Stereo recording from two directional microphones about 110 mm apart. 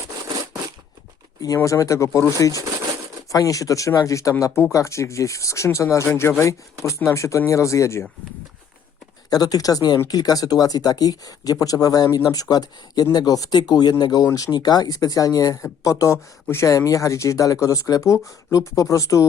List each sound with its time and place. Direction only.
1.5 s speech: 30° left (ahead or behind)
9.3 s speech: 35° left (ahead or behind)